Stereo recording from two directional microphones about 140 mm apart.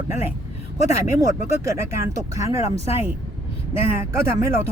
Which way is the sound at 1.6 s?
20° right (ahead or behind).